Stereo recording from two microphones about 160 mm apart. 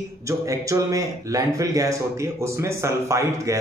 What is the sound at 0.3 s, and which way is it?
A man's voice, 20° right (ahead or behind).